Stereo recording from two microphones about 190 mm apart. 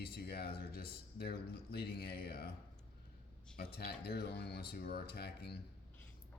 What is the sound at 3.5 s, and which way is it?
Speech, 60° left (ahead or behind).